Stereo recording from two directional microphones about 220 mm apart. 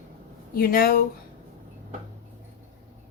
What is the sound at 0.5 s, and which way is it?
Speech, 40° left (ahead or behind).